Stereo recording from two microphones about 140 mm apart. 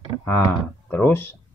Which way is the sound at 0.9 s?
15° left (ahead or behind).